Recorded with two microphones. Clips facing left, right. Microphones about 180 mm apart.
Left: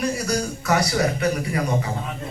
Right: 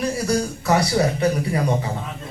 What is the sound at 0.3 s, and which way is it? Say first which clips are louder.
Speech: right 3 dB; 30° right (ahead or behind).